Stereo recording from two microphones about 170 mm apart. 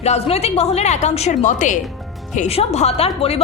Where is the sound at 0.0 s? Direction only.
40° left (ahead or behind).